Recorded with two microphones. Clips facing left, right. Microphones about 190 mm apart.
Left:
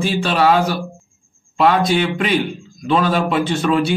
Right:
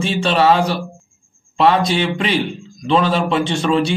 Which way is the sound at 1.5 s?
Centre (ahead or behind).